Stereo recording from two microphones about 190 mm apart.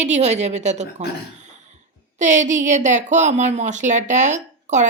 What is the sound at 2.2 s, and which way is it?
Speech, 40° right (ahead or behind).